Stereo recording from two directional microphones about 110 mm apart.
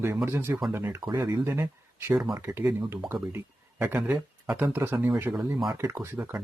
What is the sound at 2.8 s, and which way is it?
Speech, 25° right (ahead or behind).